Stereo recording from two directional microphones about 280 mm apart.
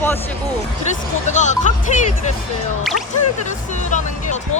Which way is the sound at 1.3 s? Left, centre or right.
Left.